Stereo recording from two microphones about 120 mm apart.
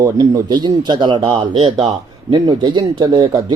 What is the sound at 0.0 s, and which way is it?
Speech, 35° right (ahead or behind).